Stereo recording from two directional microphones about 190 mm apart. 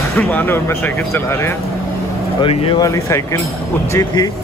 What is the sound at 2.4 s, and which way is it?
Speech, 30° left (ahead or behind).